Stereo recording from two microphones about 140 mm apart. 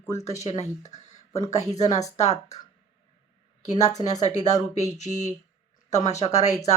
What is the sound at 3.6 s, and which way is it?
Speech, 55° left (ahead or behind).